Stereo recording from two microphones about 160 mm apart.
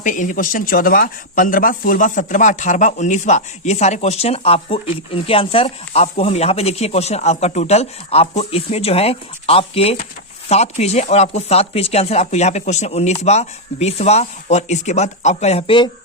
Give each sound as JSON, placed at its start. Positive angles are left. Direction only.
{"t": 0.0, "sound": "speech", "side_deg": 55}